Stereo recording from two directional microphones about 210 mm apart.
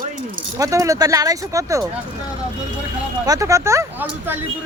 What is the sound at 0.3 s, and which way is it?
Speech, 15° right (ahead or behind).